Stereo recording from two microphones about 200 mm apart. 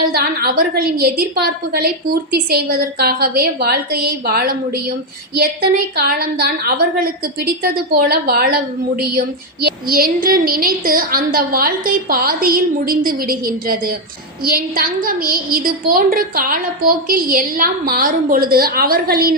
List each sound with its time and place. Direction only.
0.1 s a woman's voice: 50° right (ahead or behind)